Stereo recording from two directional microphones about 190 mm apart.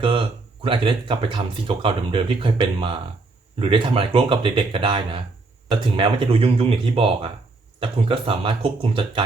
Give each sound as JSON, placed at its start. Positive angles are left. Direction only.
{"t": 0.0, "sound": "speech", "side_deg": -30}